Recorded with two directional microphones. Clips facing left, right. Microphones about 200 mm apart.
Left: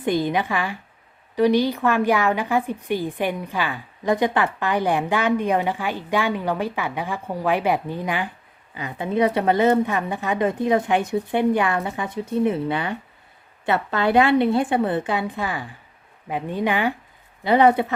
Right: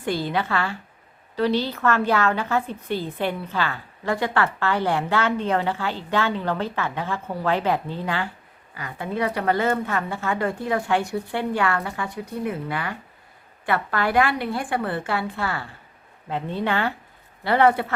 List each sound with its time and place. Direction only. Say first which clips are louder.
0.0 s a woman's voice: left 3 dB; 15° left (ahead or behind)